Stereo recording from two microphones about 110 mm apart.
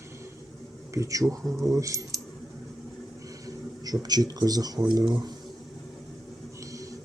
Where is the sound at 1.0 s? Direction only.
30° right (ahead or behind).